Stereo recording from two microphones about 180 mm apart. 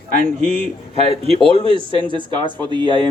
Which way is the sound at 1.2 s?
30° right (ahead or behind).